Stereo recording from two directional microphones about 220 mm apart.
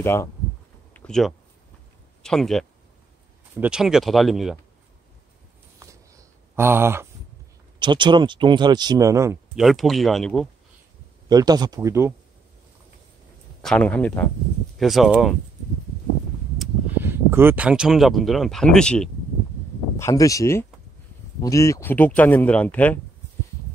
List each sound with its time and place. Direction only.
0.0 s speech: 10° left (ahead or behind)
0.9 s a sound: 5° left (ahead or behind)
2.2 s speech: centre (ahead or behind)
5.8 s a sound: 15° right (ahead or behind)
7.8 s speech: 20° right (ahead or behind)
9.6 s speech: centre (ahead or behind)
11.2 s speech: 20° right (ahead or behind)
13.6 s speech: 5° left (ahead or behind)
16.5 s speech: 10° right (ahead or behind)
20.0 s speech: 15° left (ahead or behind)